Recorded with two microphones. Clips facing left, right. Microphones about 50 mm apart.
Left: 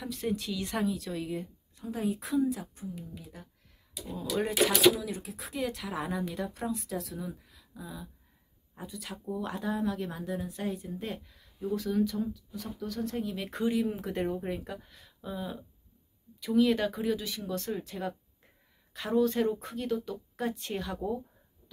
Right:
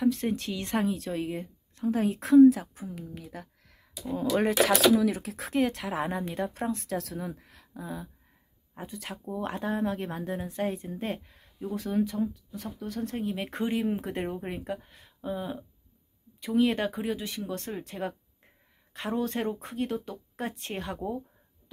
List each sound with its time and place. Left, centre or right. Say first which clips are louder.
0.1 s speech: right 2 dB; right
1.8 s speech: right 6 dB; right
4.0 s speech: right 6 dB; right
6.0 s speech: right 2 dB; right
6.4 s speech: right 3 dB; right